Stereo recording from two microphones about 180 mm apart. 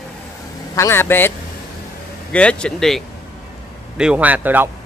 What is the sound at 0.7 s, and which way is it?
Speech, 15° left (ahead or behind).